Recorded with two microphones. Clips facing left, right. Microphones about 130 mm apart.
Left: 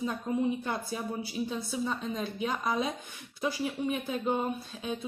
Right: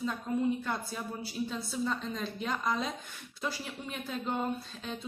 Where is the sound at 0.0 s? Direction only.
15° left (ahead or behind).